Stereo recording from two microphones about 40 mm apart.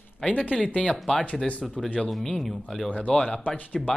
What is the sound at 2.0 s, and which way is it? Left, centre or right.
Speech, centre.